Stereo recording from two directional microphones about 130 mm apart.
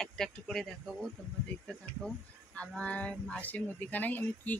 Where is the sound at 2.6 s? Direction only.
10° left (ahead or behind).